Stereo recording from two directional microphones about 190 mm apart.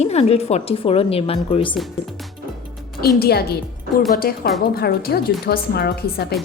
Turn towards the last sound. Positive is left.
turn(degrees=55)  # may be behind; listen again after turning